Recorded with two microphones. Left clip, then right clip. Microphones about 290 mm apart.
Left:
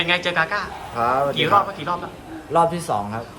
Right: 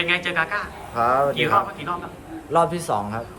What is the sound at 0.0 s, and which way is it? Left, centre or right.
A man's voice, centre.